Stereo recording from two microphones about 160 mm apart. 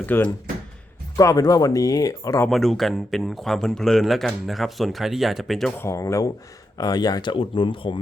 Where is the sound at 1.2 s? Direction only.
20° left (ahead or behind).